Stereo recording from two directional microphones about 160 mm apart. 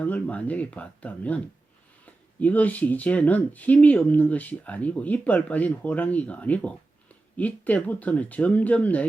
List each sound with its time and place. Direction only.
0.0 s speech: 10° left (ahead or behind)
2.4 s speech: 10° left (ahead or behind)